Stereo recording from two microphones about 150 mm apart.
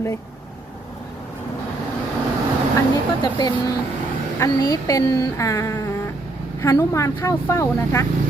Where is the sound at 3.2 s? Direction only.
30° left (ahead or behind).